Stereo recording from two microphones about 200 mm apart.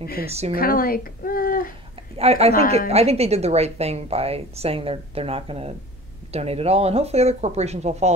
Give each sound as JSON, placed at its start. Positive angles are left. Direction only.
{"t": 0.0, "sound": "speech", "side_deg": 50}
{"t": 2.1, "sound": "speech", "side_deg": -30}